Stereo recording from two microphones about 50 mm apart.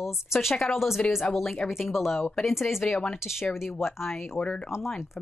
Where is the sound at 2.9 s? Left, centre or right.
Centre.